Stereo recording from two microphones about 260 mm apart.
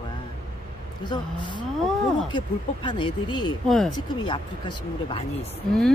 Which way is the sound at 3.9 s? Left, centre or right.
Centre.